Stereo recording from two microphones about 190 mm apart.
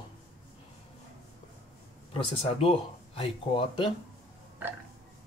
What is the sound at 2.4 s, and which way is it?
Speech, 30° left (ahead or behind).